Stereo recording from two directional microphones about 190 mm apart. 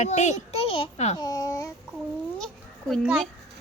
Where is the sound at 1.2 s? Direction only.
20° left (ahead or behind).